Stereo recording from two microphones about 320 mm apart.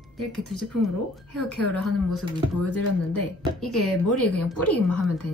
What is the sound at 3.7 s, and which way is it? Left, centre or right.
Speech, left.